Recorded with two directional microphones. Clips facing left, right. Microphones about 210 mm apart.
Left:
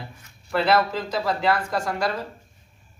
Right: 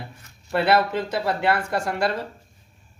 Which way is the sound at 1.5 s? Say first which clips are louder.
Even; 30° right (ahead or behind).